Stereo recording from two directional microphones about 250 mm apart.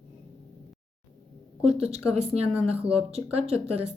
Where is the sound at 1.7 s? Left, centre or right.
Right.